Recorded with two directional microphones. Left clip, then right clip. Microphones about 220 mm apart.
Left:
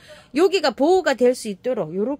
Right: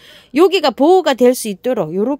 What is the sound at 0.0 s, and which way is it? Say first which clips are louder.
Speech: right 6 dB; 35° right (ahead or behind).